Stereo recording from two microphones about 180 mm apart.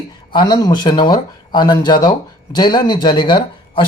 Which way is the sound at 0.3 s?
25° left (ahead or behind).